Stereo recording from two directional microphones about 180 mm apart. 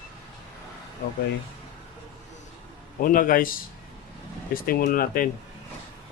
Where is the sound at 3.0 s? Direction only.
50° left (ahead or behind).